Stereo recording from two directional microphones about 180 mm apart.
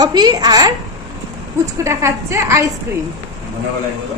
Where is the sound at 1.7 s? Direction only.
15° right (ahead or behind).